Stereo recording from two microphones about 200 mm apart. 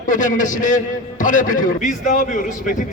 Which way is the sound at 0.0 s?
40° left (ahead or behind).